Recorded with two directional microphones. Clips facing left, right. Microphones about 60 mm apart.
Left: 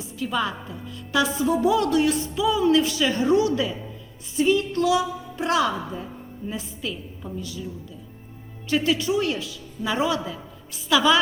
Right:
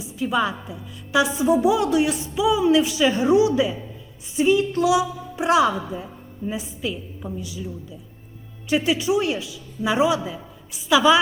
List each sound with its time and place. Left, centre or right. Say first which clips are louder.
0.0 s a woman's voice: right 3 dB; centre
8.7 s a woman's voice: right 2 dB; centre